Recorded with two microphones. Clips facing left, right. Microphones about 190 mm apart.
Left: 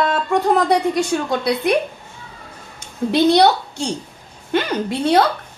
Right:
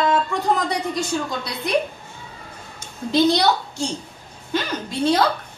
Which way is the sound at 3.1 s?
65° left (ahead or behind).